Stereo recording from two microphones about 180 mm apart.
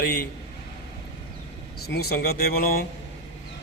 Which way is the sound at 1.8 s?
60° left (ahead or behind).